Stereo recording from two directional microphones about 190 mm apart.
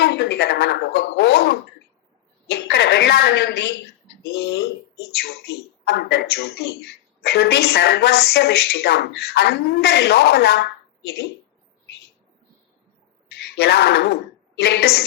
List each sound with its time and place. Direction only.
0.0 s speech: 65° left (ahead or behind)
5.8 s speech: 60° left (ahead or behind)
13.2 s speech: 60° left (ahead or behind)